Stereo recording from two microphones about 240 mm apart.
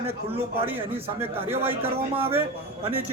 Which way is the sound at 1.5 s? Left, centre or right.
Centre.